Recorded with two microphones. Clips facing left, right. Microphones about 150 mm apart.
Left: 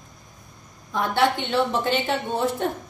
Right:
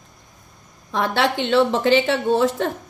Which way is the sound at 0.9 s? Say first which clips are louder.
Right 1 dB; 90° right.